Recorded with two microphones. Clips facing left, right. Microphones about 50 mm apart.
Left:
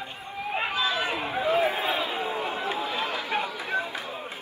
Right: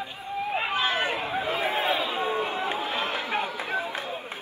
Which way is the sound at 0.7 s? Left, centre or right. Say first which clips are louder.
Right 1 dB; right.